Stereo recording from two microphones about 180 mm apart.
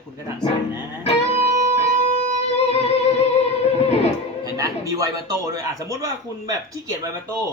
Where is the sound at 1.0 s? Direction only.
35° left (ahead or behind).